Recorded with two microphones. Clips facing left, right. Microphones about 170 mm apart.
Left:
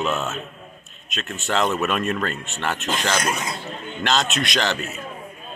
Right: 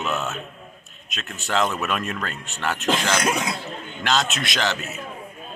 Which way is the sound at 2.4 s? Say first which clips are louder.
Left 2 dB; 20° left (ahead or behind).